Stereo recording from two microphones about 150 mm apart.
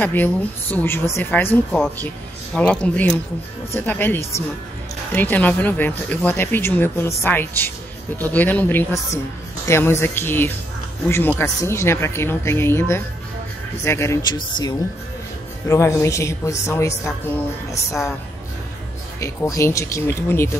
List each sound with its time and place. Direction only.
0.0 s speech: 10° left (ahead or behind)
19.1 s speech: 20° left (ahead or behind)